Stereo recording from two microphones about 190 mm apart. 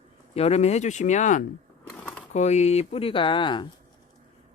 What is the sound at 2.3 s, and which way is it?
Speech, 35° left (ahead or behind).